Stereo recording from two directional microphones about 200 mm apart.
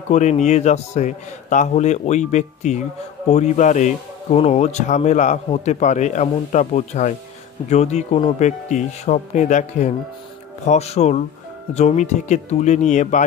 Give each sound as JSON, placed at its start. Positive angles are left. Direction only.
{"t": 0.1, "sound": "speech", "side_deg": 35}